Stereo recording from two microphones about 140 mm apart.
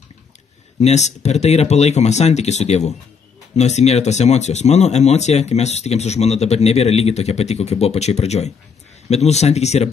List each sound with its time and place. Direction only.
0.7 s speech: 55° left (ahead or behind)